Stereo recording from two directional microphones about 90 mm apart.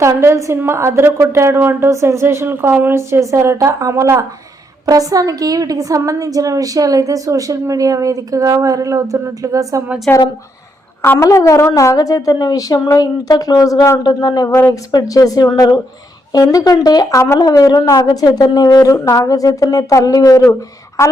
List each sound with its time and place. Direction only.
0.0 s a woman's voice: 30° right (ahead or behind)
10.1 s a woman's voice: 15° left (ahead or behind)
11.0 s a woman's voice: 30° left (ahead or behind); by 17.2 s 45° left (ahead or behind)
17.2 s a woman's voice: 35° left (ahead or behind)